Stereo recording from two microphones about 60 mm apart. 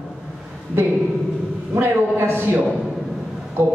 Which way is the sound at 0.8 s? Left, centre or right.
Right.